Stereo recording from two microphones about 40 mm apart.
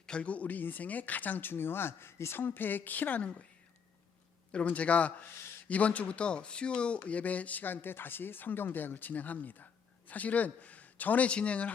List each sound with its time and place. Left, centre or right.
0.0 s a sound: left
0.3 s speech: left
3.2 s a man's voice: left
4.5 s a man's voice: left
11.3 s a man's voice: left